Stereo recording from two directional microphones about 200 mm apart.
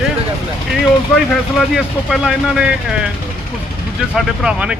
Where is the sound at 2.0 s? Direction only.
5° right (ahead or behind).